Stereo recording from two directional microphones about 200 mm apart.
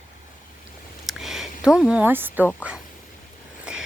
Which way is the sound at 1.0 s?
Centre (ahead or behind).